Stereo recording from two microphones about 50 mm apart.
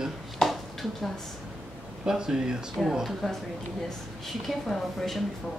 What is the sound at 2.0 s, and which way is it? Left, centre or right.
Speech, centre.